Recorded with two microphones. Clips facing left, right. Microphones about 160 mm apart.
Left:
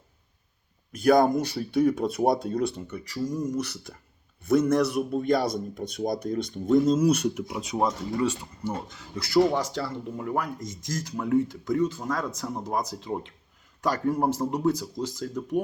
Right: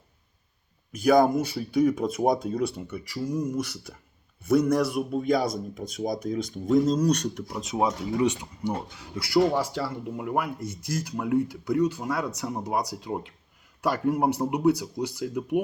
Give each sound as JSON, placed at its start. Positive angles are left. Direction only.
{"t": 0.9, "sound": "speech", "side_deg": 0}
{"t": 8.2, "sound": "speech", "side_deg": -15}